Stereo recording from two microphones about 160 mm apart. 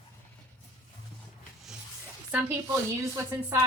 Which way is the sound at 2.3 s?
15° right (ahead or behind).